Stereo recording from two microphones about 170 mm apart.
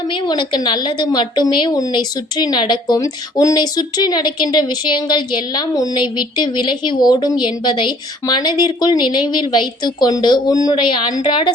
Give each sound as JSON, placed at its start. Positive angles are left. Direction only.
{"t": 0.1, "sound": "a woman's voice", "side_deg": 25}